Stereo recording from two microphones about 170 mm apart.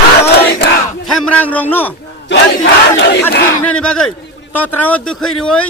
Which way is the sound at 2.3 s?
90° left.